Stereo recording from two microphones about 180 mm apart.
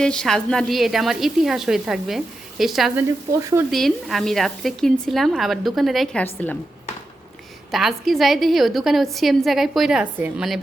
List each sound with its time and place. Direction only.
0.0 s a woman's voice: 5° left (ahead or behind)
7.7 s a woman's voice: centre (ahead or behind)